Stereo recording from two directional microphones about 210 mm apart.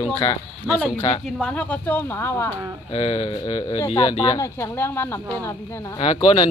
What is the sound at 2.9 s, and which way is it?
Speech, 25° left (ahead or behind).